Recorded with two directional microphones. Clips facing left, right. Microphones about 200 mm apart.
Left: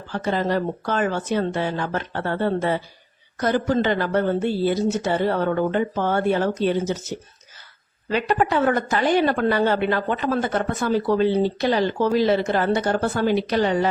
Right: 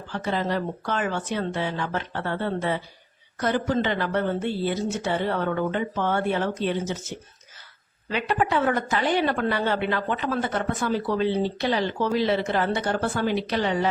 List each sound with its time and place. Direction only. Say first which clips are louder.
0.1 s a woman's voice: left 4 dB; 45° left (ahead or behind)